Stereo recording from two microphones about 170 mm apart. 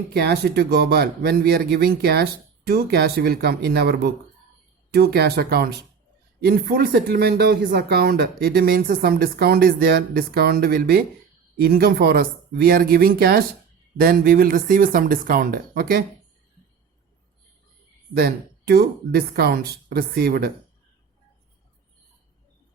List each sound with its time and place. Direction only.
0.1 s speech: 70° right (ahead or behind)
18.1 s speech: 65° right (ahead or behind)